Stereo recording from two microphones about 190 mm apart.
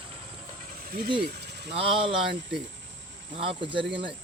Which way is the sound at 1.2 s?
60° right (ahead or behind).